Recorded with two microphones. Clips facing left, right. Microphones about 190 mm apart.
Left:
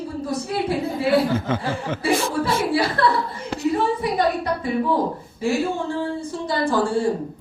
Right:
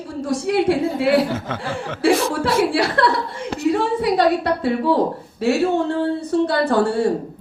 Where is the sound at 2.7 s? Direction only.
85° right.